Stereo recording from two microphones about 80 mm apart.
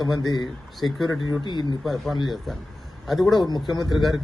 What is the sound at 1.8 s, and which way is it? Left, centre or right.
A man's voice, centre.